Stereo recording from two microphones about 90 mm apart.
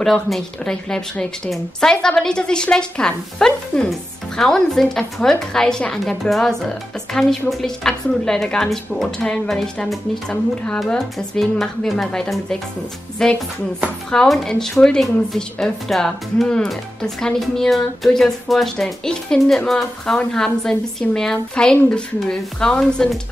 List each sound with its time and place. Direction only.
0.0 s a woman's voice: 5° left (ahead or behind)